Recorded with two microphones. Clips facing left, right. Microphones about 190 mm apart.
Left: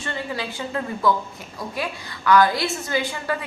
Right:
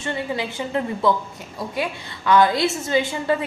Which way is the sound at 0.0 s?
20° right (ahead or behind).